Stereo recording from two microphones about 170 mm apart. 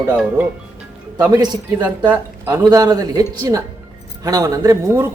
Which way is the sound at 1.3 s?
25° right (ahead or behind).